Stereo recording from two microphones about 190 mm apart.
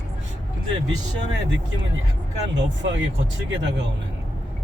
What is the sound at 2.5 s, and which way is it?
Speech, 70° right (ahead or behind).